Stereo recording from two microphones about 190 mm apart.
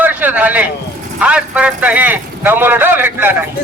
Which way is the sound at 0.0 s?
10° right (ahead or behind).